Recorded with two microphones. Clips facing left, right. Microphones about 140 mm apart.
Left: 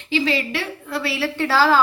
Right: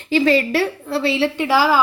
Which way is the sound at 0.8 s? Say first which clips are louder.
Right 5 dB; 25° right (ahead or behind).